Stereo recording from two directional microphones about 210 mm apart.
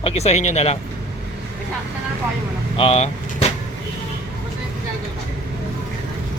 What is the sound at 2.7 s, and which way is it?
Speech, 30° left (ahead or behind).